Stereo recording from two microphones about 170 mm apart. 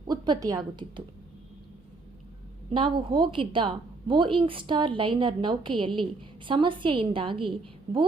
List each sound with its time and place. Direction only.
0.1 s a woman's voice: 20° right (ahead or behind)
2.7 s a woman's voice: 30° right (ahead or behind)